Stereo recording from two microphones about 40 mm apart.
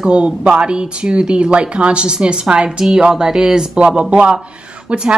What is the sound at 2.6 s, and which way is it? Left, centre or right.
Speech, centre.